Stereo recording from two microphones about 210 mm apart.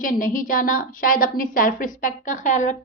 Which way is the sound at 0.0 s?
40° left (ahead or behind).